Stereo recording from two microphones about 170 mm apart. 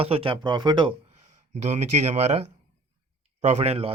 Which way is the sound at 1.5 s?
40° right (ahead or behind).